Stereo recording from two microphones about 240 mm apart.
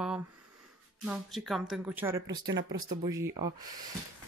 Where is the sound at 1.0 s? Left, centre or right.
Centre.